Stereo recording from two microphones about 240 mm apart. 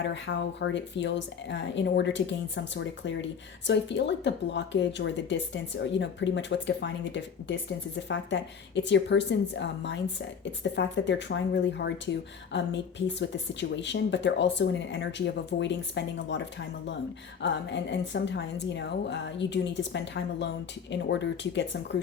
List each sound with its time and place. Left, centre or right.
0.1 s a woman's voice: left
13.1 s a woman's voice: left